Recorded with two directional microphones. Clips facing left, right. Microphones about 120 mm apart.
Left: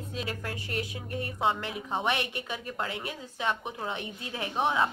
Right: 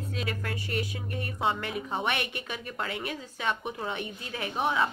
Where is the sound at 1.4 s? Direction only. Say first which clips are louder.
Even; 20° left (ahead or behind).